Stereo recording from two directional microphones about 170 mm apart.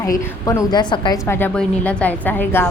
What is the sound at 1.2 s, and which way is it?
A woman's voice, 10° left (ahead or behind).